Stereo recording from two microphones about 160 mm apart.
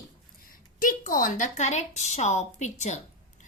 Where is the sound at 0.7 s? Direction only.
55° left (ahead or behind).